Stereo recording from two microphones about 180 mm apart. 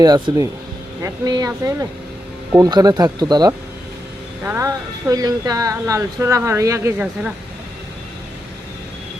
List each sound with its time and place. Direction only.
0.0 s speech: 20° right (ahead or behind); by 7.3 s 5° right (ahead or behind)